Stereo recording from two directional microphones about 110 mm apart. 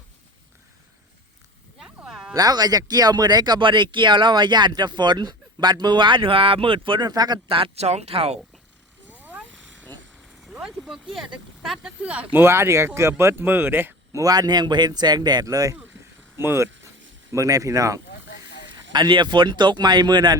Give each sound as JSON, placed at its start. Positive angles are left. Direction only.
{"t": 1.8, "sound": "a sound", "side_deg": -5}
{"t": 2.3, "sound": "speech", "side_deg": -35}
{"t": 7.1, "sound": "speech", "side_deg": -40}
{"t": 7.4, "sound": "speech", "side_deg": -55}
{"t": 9.0, "sound": "a sound", "side_deg": -15}
{"t": 10.4, "sound": "speech", "side_deg": -5}
{"t": 14.2, "sound": "speech", "side_deg": -35}
{"t": 18.9, "sound": "speech", "side_deg": -40}